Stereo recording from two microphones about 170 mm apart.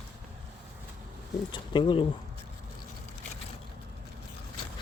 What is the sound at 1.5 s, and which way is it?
Speech, 30° left (ahead or behind).